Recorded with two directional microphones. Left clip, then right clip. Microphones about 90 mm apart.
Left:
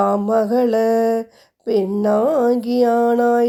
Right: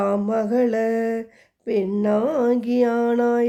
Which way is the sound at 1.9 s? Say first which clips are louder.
Left 5 dB; 20° left (ahead or behind).